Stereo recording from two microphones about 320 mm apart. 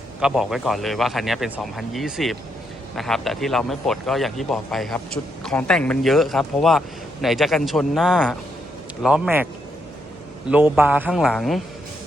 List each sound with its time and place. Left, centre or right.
0.2 s speech: centre
10.5 s speech: centre